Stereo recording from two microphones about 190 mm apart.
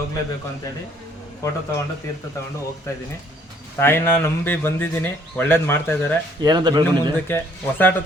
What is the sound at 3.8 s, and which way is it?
Speech, 10° left (ahead or behind).